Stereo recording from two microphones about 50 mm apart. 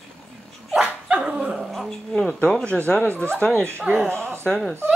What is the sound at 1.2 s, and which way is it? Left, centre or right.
Dog, centre.